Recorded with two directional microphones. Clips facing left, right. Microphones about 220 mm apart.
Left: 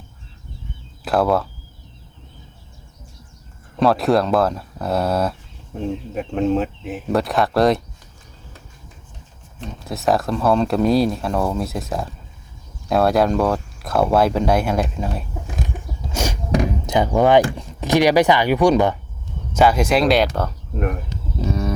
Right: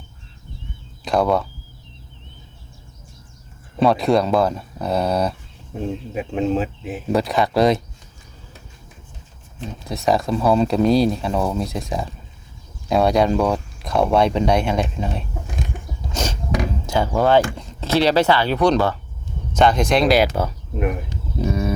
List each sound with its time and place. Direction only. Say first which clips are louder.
1.0 s speech: left 1 dB; centre (ahead or behind)
3.8 s speech: even; centre (ahead or behind)
9.6 s speech: even; centre (ahead or behind)
16.1 s a sound: left 1 dB; 10° left (ahead or behind)
16.6 s speech: left 2 dB; 15° left (ahead or behind); by 20.9 s 5° right (ahead or behind)